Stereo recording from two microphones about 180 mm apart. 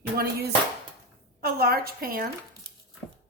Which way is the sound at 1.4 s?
55° right (ahead or behind).